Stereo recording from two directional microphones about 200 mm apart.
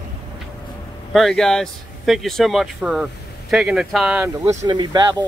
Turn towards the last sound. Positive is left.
turn(degrees=-20)  # may be behind; listen again after turning